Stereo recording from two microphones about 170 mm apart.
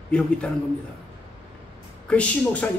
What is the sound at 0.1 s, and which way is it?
Speech, 5° left (ahead or behind).